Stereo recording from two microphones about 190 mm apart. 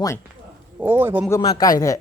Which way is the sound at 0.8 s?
10° right (ahead or behind).